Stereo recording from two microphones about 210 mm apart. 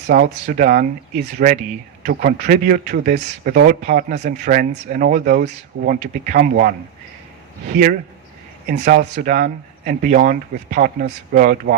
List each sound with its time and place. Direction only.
0.1 s speech: 40° right (ahead or behind)
8.8 s speech: 40° right (ahead or behind)